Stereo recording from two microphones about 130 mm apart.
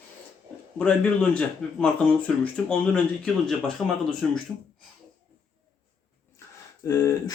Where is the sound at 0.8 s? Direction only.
10° left (ahead or behind).